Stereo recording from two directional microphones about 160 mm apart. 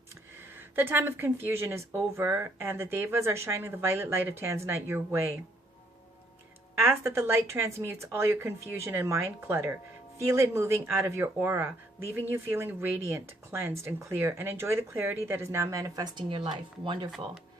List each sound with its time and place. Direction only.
0.3 s speech: 15° right (ahead or behind)
6.8 s speech: 15° right (ahead or behind)